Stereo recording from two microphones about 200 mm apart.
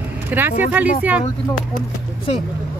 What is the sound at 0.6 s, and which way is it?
Speech, 10° right (ahead or behind).